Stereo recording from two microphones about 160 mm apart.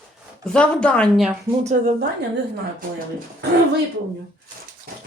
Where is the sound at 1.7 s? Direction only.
60° right (ahead or behind).